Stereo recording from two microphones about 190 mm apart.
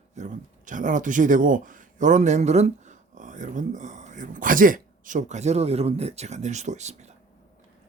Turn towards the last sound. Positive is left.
turn(degrees=-35)  # may be behind; listen again after turning